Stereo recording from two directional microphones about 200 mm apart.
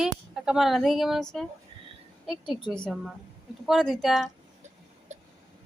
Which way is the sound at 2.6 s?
5° left (ahead or behind).